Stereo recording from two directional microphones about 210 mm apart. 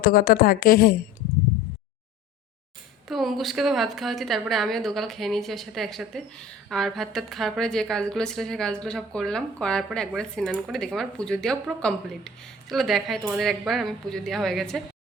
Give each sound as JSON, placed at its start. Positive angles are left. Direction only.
{"t": 0.0, "sound": "a woman's voice", "side_deg": 45}
{"t": 3.1, "sound": "a woman's voice", "side_deg": 0}